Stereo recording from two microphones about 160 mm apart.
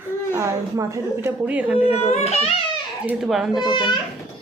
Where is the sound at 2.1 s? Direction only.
45° left (ahead or behind).